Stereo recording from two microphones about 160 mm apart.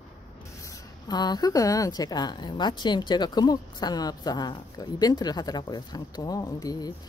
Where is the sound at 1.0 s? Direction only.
25° left (ahead or behind).